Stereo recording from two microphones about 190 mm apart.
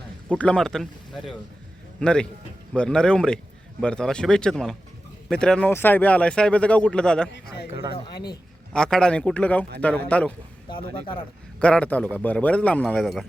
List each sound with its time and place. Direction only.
0.3 s a man's voice: 5° left (ahead or behind)
7.3 s speech: 60° left (ahead or behind)
8.7 s a man's voice: 5° left (ahead or behind)
11.6 s speech: 5° left (ahead or behind)